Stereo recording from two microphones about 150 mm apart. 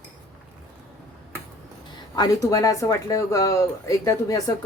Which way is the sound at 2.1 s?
25° left (ahead or behind).